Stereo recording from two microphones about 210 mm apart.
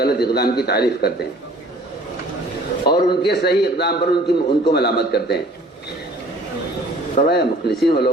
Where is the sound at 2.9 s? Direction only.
50° left (ahead or behind).